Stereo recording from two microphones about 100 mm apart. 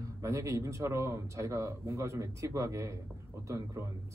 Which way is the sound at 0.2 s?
30° right (ahead or behind).